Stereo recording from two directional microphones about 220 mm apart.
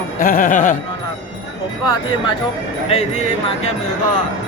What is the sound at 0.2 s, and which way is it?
Speech, 40° left (ahead or behind).